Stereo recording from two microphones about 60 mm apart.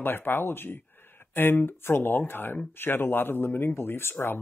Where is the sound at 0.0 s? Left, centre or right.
Left.